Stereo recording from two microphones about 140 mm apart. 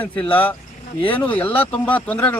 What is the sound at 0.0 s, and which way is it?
Speech, 10° left (ahead or behind).